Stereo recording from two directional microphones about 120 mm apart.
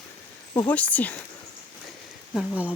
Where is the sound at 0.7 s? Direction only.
10° left (ahead or behind).